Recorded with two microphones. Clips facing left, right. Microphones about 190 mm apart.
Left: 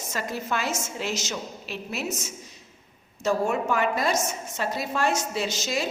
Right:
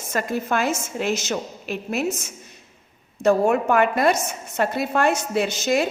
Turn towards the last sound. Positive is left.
turn(degrees=-55)  # may be behind; listen again after turning